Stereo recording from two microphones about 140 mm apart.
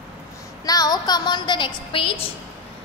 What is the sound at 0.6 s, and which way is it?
A woman's voice, 25° left (ahead or behind).